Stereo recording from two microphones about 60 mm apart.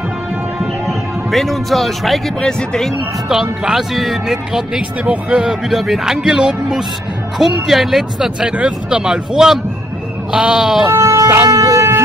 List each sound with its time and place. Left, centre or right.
0.8 s speech: centre
3.3 s speech: centre
5.0 s speech: right
5.4 s music: centre
7.3 s speech: centre
8.4 s music: centre
11.0 s wind instrument: right
11.4 s shofar: right